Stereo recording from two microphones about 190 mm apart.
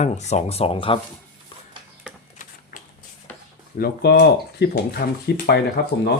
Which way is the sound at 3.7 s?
55° left (ahead or behind).